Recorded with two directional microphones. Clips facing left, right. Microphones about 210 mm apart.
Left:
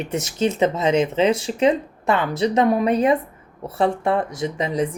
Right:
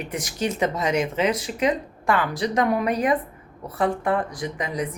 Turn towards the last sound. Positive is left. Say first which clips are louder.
# left 5 dB
turn(degrees=25)  # may be behind; listen again after turning